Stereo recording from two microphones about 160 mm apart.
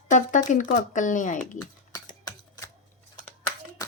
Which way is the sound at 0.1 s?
50° left (ahead or behind).